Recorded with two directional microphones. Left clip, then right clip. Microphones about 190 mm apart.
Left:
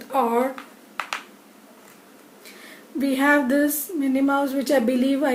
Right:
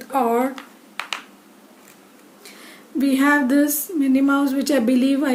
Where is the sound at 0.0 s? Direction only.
50° right (ahead or behind).